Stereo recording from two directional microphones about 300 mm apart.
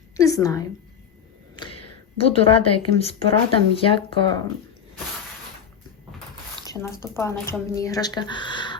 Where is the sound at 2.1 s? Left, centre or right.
Centre.